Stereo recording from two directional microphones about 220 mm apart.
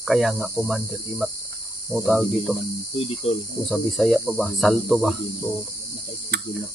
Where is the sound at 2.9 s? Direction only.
25° left (ahead or behind).